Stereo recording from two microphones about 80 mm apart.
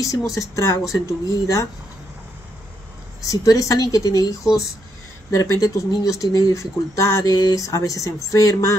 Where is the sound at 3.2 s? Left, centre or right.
Left.